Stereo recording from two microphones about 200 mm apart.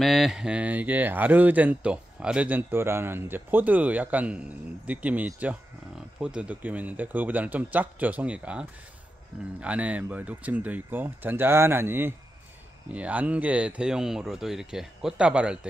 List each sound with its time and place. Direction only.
0.0 s speech: centre (ahead or behind)